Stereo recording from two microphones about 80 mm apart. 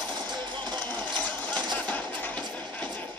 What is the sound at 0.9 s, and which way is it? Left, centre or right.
Sewing machine, centre.